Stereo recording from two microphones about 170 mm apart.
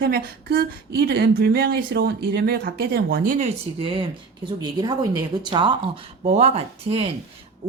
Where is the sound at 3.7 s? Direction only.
30° right (ahead or behind).